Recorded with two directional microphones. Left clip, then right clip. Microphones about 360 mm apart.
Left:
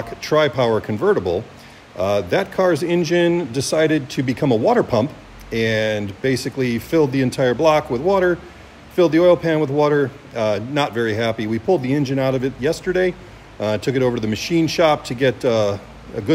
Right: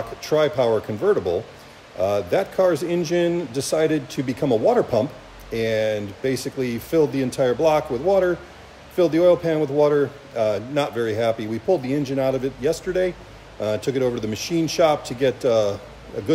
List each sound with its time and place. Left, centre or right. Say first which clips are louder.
0.2 s a man's voice: left 3 dB; left